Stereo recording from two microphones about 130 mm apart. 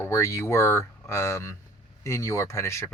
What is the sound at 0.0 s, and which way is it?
Speech, 25° left (ahead or behind).